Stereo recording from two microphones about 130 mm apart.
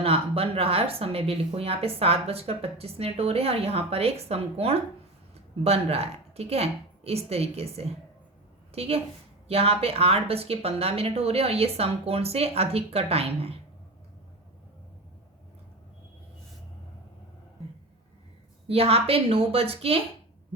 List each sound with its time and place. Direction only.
0.0 s a woman's voice: 50° right (ahead or behind)
18.7 s speech: 50° right (ahead or behind)